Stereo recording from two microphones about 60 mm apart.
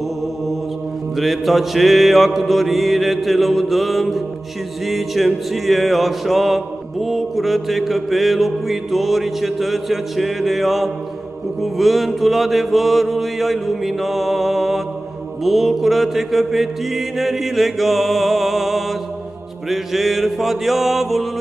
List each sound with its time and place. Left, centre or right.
1.1 s music: centre